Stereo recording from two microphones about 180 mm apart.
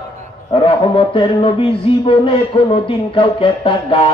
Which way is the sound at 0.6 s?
30° left (ahead or behind).